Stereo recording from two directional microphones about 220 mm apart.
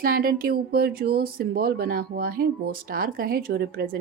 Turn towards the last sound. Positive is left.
turn(degrees=-45)  # may be behind; listen again after turning